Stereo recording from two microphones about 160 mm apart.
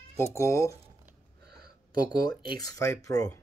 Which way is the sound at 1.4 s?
80° right.